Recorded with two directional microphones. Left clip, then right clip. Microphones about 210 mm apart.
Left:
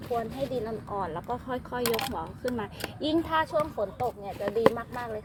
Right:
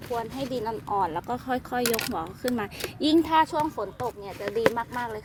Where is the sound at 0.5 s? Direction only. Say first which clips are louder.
Right 5 dB; 60° right (ahead or behind).